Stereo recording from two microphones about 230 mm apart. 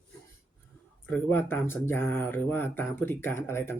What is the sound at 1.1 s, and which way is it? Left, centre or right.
Speech, centre.